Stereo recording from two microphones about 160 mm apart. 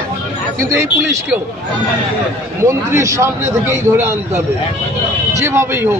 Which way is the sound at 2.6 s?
20° right (ahead or behind).